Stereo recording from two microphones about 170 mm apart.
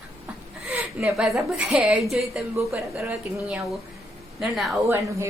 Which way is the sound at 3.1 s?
5° right (ahead or behind).